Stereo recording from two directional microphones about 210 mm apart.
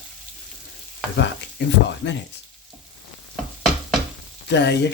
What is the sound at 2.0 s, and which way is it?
Speech, 55° left (ahead or behind).